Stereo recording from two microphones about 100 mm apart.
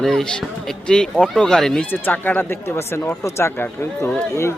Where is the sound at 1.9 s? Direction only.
20° left (ahead or behind).